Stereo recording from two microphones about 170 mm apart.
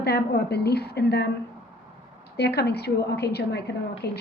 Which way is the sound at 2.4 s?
75° left (ahead or behind).